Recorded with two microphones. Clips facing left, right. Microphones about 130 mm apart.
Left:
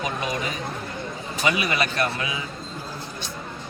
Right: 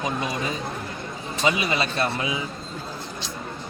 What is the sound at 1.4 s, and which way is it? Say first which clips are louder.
Speech: even; 25° right (ahead or behind).